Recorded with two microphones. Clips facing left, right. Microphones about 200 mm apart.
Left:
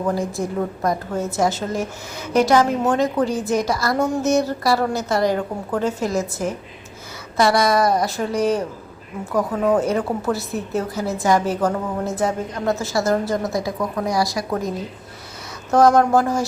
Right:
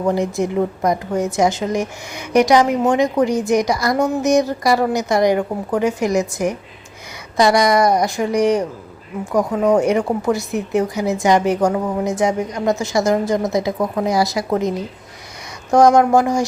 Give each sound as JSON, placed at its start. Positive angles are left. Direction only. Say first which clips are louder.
{"t": 0.1, "sound": "a woman's voice", "louder": "right 4 dB", "side_deg": -20}